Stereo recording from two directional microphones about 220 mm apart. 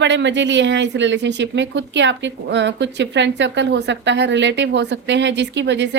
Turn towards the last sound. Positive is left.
turn(degrees=-55)  # may be behind; listen again after turning